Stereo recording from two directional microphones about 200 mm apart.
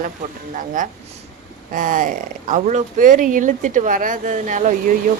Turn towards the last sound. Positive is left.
turn(degrees=-40)  # may be behind; listen again after turning